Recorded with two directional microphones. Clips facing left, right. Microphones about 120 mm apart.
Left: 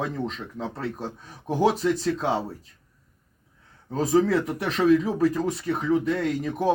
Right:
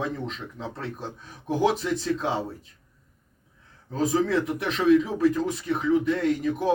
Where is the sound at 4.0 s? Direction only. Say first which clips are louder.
Left 2 dB; 30° left (ahead or behind).